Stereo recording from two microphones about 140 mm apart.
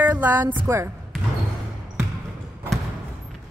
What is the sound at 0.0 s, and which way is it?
Music, 10° right (ahead or behind).